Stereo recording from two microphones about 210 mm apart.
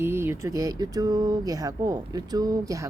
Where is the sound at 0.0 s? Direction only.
10° right (ahead or behind).